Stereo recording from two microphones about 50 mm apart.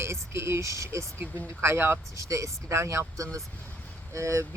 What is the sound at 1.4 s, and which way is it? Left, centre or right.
Speech, right.